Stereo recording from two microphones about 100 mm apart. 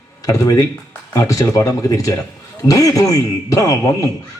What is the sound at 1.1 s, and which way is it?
Speech, 35° left (ahead or behind).